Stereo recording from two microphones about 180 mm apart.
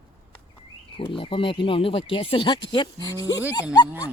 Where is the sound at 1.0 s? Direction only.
30° left (ahead or behind).